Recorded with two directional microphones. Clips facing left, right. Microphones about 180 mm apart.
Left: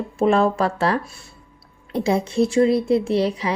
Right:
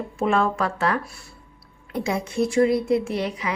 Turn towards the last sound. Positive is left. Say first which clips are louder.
# left 6 dB
turn(degrees=35)  # may be behind; listen again after turning